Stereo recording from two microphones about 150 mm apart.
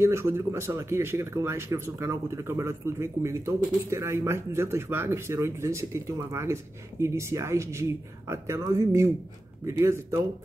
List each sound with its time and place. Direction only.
0.0 s speech: 15° right (ahead or behind)